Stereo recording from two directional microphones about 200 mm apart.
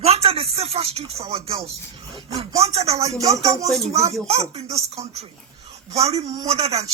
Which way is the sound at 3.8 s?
30° right (ahead or behind).